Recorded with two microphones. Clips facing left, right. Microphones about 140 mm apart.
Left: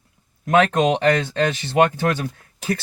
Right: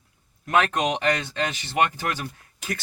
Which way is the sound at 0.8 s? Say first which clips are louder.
Left 6 dB; 30° left (ahead or behind).